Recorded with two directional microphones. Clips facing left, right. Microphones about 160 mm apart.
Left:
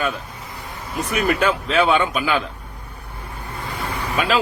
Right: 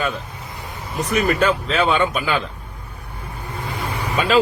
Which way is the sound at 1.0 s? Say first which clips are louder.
Right 2 dB; 5° left (ahead or behind).